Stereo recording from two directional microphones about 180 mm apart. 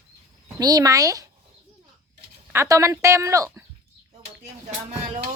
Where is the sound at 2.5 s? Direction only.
15° right (ahead or behind).